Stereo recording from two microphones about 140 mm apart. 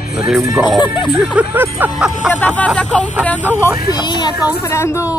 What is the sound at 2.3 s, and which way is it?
Speech, 10° left (ahead or behind).